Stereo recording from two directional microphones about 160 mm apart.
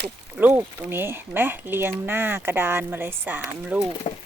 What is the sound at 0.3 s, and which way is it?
Speech, 10° right (ahead or behind).